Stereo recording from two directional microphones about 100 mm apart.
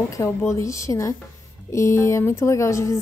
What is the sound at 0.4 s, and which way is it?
A woman's voice, 30° left (ahead or behind).